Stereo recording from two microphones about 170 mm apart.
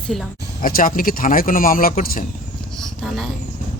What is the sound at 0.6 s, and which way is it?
A man's voice, 55° left (ahead or behind).